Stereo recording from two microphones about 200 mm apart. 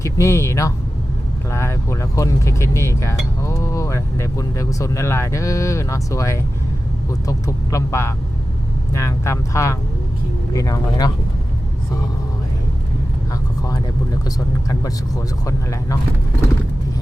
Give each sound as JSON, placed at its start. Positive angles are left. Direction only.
{"t": 0.0, "sound": "speech", "side_deg": 15}
{"t": 14.3, "sound": "speech", "side_deg": 15}